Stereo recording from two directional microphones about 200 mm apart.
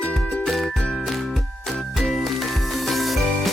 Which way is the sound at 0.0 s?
5° left (ahead or behind).